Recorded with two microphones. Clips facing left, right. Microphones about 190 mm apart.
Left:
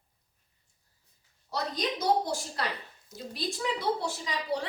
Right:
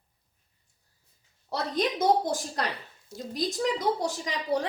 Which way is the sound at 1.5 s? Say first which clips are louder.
Right 4 dB; 55° right (ahead or behind).